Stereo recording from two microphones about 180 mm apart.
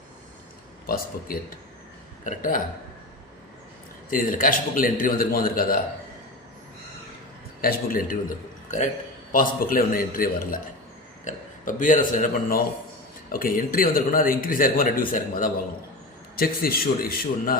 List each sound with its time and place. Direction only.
0.9 s a man's voice: 55° left (ahead or behind)
4.1 s a man's voice: 50° left (ahead or behind)
7.6 s a man's voice: 50° left (ahead or behind)
9.3 s a man's voice: 50° left (ahead or behind)